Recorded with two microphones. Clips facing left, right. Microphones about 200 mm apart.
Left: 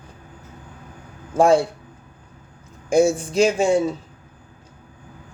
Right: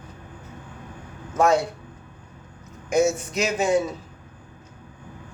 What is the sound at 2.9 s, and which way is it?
Speech, 30° left (ahead or behind).